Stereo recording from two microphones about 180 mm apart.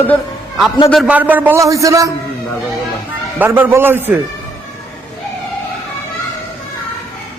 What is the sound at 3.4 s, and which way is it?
Speech, 10° right (ahead or behind).